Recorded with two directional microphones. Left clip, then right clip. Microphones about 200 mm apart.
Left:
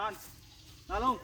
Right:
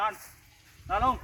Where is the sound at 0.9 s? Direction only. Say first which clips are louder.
Right 5 dB; 30° right (ahead or behind).